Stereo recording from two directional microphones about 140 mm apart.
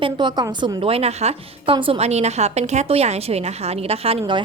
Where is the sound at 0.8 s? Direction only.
45° right (ahead or behind).